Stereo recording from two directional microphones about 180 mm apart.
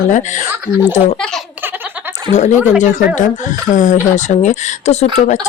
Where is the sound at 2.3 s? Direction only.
40° left (ahead or behind).